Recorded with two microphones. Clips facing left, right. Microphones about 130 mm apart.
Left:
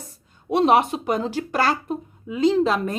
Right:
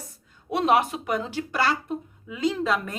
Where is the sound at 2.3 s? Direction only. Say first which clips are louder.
Left 6 dB; 30° left (ahead or behind).